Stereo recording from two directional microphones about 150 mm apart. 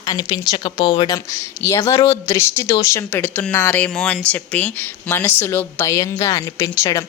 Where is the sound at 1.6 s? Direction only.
20° left (ahead or behind).